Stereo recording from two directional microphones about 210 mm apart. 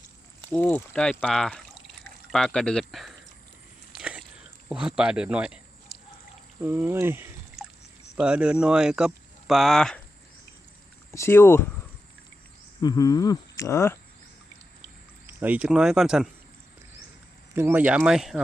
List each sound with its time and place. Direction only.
0.5 s speech: 5° left (ahead or behind)
3.9 s biting: 5° right (ahead or behind)
4.7 s speech: 5° right (ahead or behind)
11.1 s speech: 10° left (ahead or behind)
12.8 s speech: 20° left (ahead or behind)
15.3 s speech: 10° right (ahead or behind)
17.5 s speech: 10° right (ahead or behind)